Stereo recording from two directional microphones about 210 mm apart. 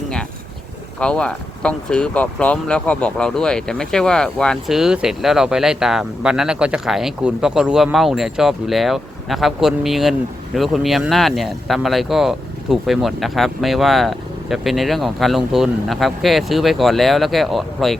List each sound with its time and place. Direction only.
0.9 s speech: 5° left (ahead or behind)